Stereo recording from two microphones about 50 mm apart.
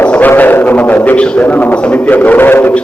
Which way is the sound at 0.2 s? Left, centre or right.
Left.